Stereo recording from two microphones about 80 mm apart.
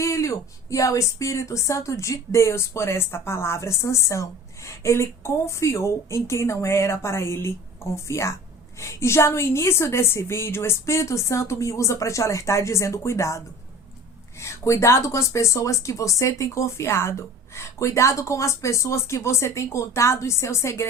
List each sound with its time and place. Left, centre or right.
0.0 s speech: left
14.4 s speech: left